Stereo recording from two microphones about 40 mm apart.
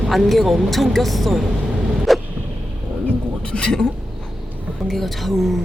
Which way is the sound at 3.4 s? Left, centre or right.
Left.